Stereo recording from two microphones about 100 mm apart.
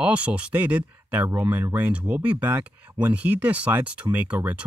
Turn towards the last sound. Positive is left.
turn(degrees=-15)  # may be behind; listen again after turning